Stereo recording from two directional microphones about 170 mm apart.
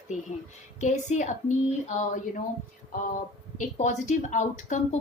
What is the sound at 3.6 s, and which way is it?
A woman's voice, 45° left (ahead or behind).